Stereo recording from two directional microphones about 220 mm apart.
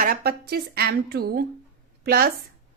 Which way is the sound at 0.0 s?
40° right (ahead or behind).